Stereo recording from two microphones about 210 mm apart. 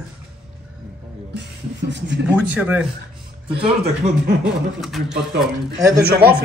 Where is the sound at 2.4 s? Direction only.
5° right (ahead or behind).